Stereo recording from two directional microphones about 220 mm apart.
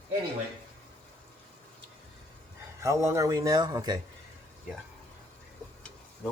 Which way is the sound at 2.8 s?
15° right (ahead or behind).